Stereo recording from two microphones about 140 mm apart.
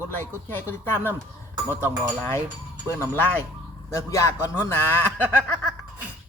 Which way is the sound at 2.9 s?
15° left (ahead or behind).